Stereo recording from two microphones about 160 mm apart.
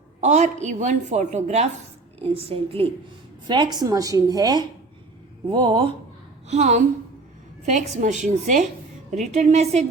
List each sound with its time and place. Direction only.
0.2 s a woman's voice: 50° right (ahead or behind); by 5.9 s 30° right (ahead or behind)
6.5 s a woman's voice: 45° right (ahead or behind)